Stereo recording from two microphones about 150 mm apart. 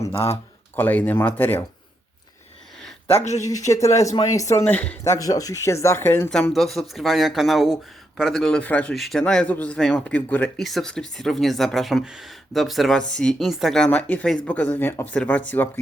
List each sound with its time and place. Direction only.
0.8 s speech: 10° left (ahead or behind)
3.1 s speech: 45° left (ahead or behind)
3.4 s speech: 20° left (ahead or behind)
5.1 s speech: 25° left (ahead or behind)
6.5 s speech: centre (ahead or behind)
10.6 s speech: centre (ahead or behind)